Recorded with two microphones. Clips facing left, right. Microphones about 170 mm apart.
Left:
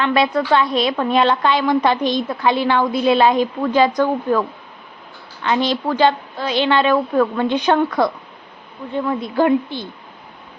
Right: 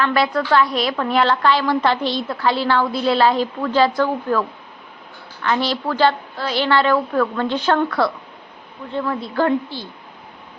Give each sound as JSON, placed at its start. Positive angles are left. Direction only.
{"t": 0.0, "sound": "a woman's voice", "side_deg": 20}